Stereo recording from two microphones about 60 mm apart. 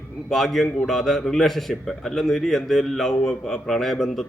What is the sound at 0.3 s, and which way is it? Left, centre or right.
A man's voice, centre.